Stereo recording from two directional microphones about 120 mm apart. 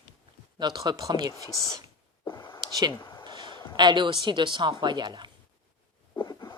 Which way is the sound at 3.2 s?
40° right (ahead or behind).